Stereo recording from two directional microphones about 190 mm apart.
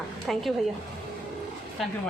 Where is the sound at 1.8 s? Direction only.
Centre (ahead or behind).